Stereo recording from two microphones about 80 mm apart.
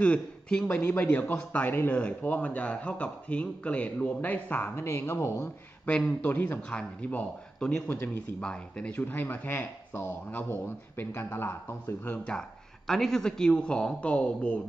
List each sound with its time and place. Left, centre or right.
0.0 s speech: centre
0.7 s speech: left
4.8 s speech: left
5.9 s speech: centre
6.2 s speech: left
6.7 s speech: centre
8.4 s speech: centre; by 12.2 s left
12.3 s speech: centre